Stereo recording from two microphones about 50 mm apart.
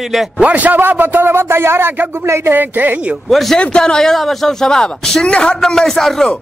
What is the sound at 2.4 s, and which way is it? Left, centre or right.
Speech, right.